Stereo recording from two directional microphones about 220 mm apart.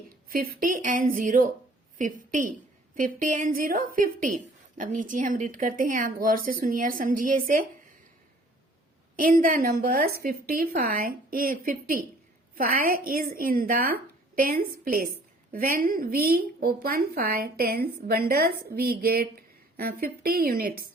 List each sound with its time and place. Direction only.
0.3 s a woman's voice: 40° right (ahead or behind)
9.1 s a woman's voice: 40° right (ahead or behind)